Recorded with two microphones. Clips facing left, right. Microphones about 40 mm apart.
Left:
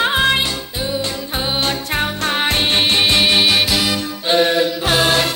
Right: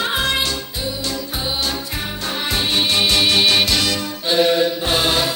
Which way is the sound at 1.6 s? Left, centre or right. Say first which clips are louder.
Left 5 dB; left.